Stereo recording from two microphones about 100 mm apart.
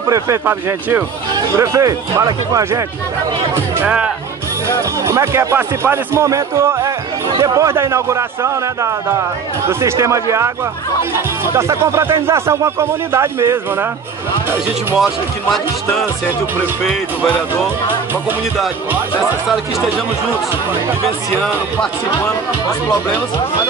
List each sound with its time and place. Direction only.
0.5 s speech: 20° right (ahead or behind)
1.6 s speech: 35° right (ahead or behind)
3.8 s speech: 15° right (ahead or behind)
4.6 s speech: 25° right (ahead or behind)